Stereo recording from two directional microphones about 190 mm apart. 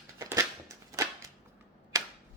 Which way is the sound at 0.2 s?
15° right (ahead or behind).